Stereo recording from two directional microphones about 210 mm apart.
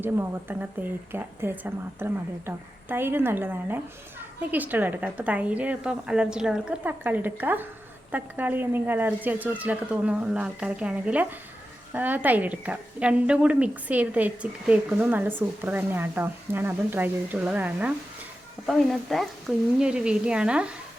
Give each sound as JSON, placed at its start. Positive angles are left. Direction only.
{"t": 0.0, "sound": "a woman's voice", "side_deg": -10}